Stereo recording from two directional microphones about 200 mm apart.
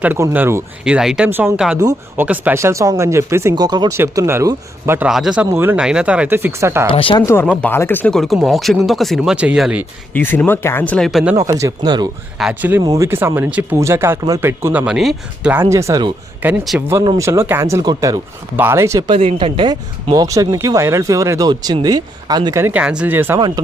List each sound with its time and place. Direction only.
0.0 s speech: 10° right (ahead or behind)
1.8 s speech: 20° right (ahead or behind)
2.2 s speech: 10° right (ahead or behind)
6.8 s speech: 25° left (ahead or behind)
7.3 s speech: 10° left (ahead or behind)
10.2 s speech: 10° left (ahead or behind)
11.3 s speech: 15° right (ahead or behind)
12.4 s speech: 5° right (ahead or behind)
12.8 s speech: 15° right (ahead or behind)
15.6 s speech: 15° right (ahead or behind)
16.4 s speech: 5° right (ahead or behind)
16.9 s speech: 20° right (ahead or behind)